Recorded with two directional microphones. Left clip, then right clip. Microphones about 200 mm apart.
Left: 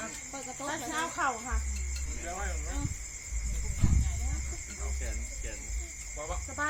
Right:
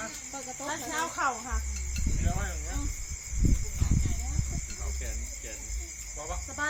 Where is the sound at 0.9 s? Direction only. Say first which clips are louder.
Right 2 dB; 20° right (ahead or behind).